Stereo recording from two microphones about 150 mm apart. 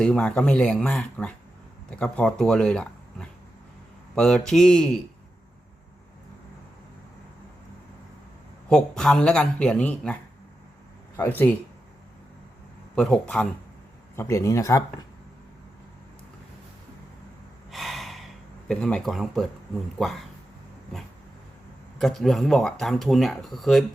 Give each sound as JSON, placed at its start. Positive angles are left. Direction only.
{"t": 0.0, "sound": "speech", "side_deg": 5}
{"t": 8.7, "sound": "speech", "side_deg": 5}
{"t": 11.2, "sound": "speech", "side_deg": 15}
{"t": 13.0, "sound": "speech", "side_deg": 5}
{"t": 14.2, "sound": "speech", "side_deg": 20}
{"t": 17.7, "sound": "gasp", "side_deg": 0}
{"t": 18.7, "sound": "speech", "side_deg": 5}
{"t": 21.9, "sound": "speech", "side_deg": 0}